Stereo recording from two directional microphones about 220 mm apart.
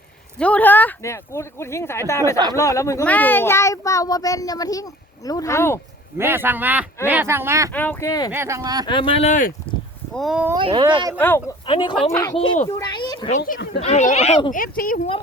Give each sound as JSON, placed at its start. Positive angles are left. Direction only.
{"t": 0.3, "sound": "speech", "side_deg": 5}
{"t": 6.1, "sound": "speech", "side_deg": -10}
{"t": 7.7, "sound": "speech", "side_deg": 10}
{"t": 8.3, "sound": "speech", "side_deg": -10}
{"t": 8.9, "sound": "speech", "side_deg": 25}
{"t": 10.2, "sound": "speech", "side_deg": -5}
{"t": 10.5, "sound": "speech", "side_deg": -20}
{"t": 11.2, "sound": "speech", "side_deg": 10}
{"t": 11.6, "sound": "a child's voice", "side_deg": 20}
{"t": 13.3, "sound": "speech", "side_deg": 40}